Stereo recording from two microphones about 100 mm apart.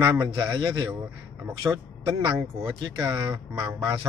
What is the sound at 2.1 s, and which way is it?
A man's voice, 45° right (ahead or behind).